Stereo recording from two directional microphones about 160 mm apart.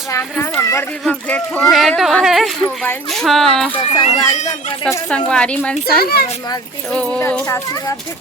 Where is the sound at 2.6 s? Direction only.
10° left (ahead or behind).